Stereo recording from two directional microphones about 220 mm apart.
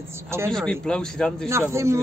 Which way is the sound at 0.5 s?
5° left (ahead or behind).